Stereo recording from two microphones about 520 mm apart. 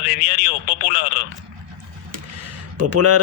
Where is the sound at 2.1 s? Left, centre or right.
Right.